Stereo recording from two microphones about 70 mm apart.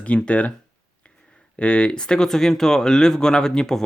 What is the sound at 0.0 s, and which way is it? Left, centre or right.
Speech, centre.